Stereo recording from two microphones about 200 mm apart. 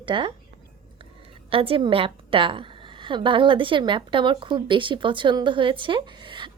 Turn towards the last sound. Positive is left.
turn(degrees=-25)  # may be behind; listen again after turning